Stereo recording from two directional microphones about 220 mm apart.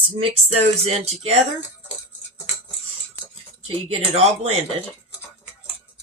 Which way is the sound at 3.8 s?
25° right (ahead or behind).